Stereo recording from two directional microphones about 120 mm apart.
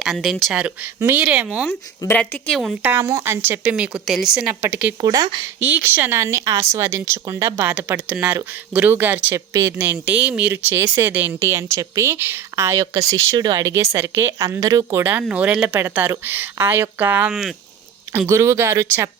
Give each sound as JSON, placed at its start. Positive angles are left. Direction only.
{"t": 0.0, "sound": "a woman's voice", "side_deg": 0}
{"t": 0.5, "sound": "speech", "side_deg": -15}
{"t": 2.1, "sound": "a woman's voice", "side_deg": 10}
{"t": 2.8, "sound": "speech", "side_deg": -20}
{"t": 3.6, "sound": "speech", "side_deg": -5}
{"t": 5.0, "sound": "speech", "side_deg": -35}
{"t": 5.5, "sound": "speech", "side_deg": -15}
{"t": 7.7, "sound": "speech", "side_deg": -15}
{"t": 9.7, "sound": "speech", "side_deg": -15}